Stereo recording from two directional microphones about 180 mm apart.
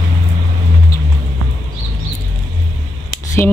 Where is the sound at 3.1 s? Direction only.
15° left (ahead or behind).